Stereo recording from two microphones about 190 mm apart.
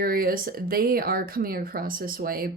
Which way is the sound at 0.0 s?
50° right (ahead or behind).